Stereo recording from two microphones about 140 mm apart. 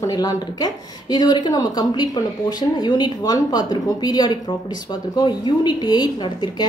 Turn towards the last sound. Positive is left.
turn(degrees=30)  # may be behind; listen again after turning